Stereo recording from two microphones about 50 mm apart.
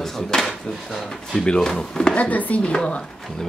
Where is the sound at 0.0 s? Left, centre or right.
Centre.